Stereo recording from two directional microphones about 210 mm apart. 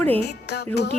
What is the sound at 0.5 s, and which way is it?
Music, 50° left (ahead or behind).